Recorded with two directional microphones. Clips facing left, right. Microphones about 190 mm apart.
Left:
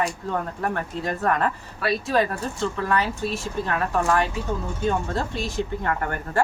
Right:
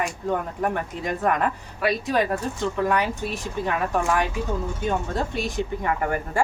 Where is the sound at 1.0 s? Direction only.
15° right (ahead or behind).